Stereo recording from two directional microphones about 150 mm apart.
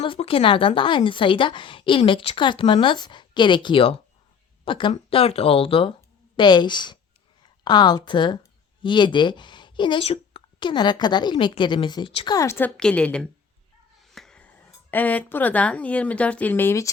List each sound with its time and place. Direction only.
0.0 s a woman's voice: 35° left (ahead or behind); by 12.7 s 15° left (ahead or behind)
12.7 s a woman's voice: 5° left (ahead or behind)